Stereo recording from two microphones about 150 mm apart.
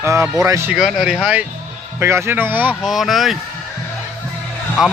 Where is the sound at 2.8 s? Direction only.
Centre (ahead or behind).